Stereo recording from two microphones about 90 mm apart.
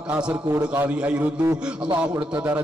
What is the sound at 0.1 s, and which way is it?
A man's voice, 15° right (ahead or behind).